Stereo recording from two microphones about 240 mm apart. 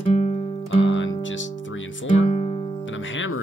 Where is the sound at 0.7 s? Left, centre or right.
Left.